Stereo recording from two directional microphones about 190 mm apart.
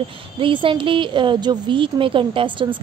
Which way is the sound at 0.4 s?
25° right (ahead or behind).